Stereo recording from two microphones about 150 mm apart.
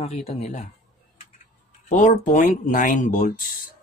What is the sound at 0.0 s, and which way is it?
Speech, 40° left (ahead or behind).